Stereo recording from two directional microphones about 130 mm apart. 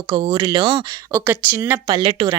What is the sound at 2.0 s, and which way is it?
Speech, 40° right (ahead or behind).